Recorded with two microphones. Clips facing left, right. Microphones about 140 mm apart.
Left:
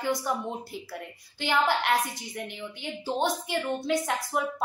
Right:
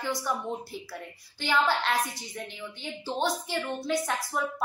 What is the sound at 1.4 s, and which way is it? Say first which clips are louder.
A woman's voice: left 1 dB; 20° left (ahead or behind).